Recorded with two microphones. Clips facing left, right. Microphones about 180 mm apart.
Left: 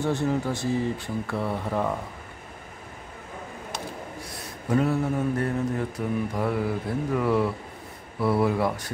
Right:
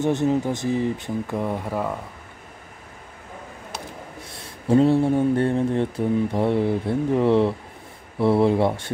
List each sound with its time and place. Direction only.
0.0 s speech: 20° right (ahead or behind)
4.2 s mantra: 25° right (ahead or behind)